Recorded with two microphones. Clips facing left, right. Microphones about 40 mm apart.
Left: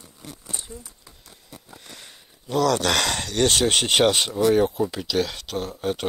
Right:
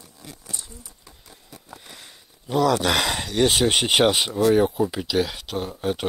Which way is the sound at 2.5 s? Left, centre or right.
Centre.